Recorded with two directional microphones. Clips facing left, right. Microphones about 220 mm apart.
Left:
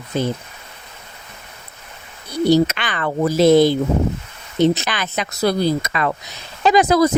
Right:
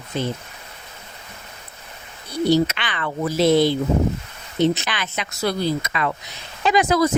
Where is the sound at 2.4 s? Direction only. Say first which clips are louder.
Left 3 dB; 40° left (ahead or behind).